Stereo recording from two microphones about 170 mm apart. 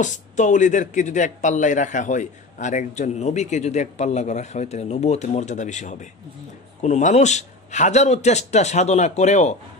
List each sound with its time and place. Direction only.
0.0 s a man's voice: 45° left (ahead or behind)